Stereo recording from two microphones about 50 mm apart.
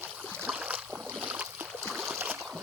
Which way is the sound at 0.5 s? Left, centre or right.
Right.